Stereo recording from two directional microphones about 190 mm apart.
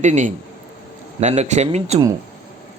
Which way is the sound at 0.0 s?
40° right (ahead or behind).